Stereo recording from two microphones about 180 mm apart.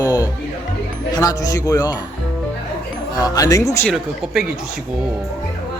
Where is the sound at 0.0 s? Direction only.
20° left (ahead or behind).